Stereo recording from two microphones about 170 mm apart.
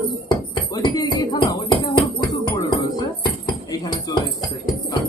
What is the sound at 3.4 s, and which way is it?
Music, 25° left (ahead or behind).